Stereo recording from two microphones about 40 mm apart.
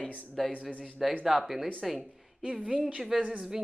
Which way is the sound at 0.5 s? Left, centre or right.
Left.